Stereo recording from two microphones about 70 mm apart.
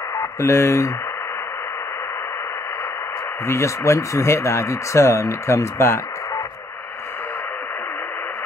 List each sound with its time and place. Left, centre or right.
0.4 s speech: left
3.4 s speech: left